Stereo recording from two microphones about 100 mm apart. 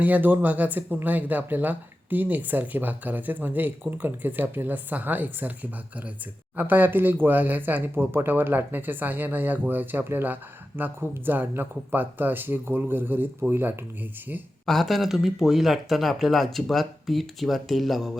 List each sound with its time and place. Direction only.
0.0 s speech: 20° right (ahead or behind)
6.6 s speech: 20° right (ahead or behind)
14.7 s speech: centre (ahead or behind)